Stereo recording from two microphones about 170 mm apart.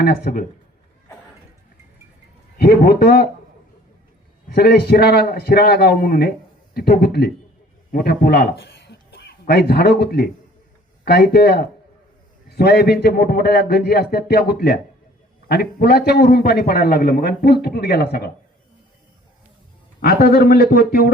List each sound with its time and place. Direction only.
0.0 s speech: 60° left (ahead or behind)
2.6 s speech: 65° left (ahead or behind)
4.4 s a man's voice: 70° left (ahead or behind)
20.0 s speech: 65° left (ahead or behind)